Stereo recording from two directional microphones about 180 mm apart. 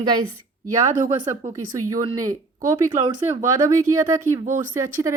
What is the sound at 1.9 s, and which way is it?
Speech, 20° right (ahead or behind).